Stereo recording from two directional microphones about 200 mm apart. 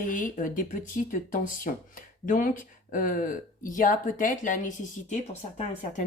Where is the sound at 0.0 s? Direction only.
40° left (ahead or behind).